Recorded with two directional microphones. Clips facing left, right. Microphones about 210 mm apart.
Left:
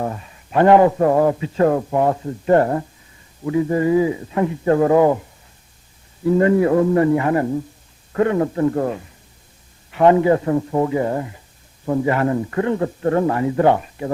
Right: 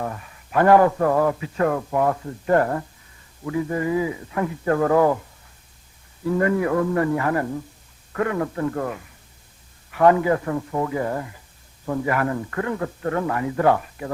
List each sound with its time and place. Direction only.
0.0 s a man's voice: 25° left (ahead or behind)
6.2 s a man's voice: 25° left (ahead or behind)